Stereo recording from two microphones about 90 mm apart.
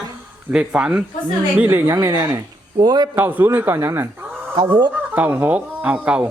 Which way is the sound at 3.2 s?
25° right (ahead or behind).